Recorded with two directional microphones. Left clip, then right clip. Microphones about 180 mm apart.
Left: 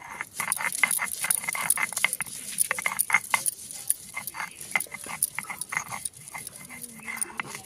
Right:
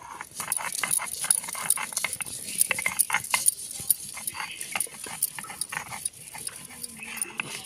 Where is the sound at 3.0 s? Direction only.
Centre (ahead or behind).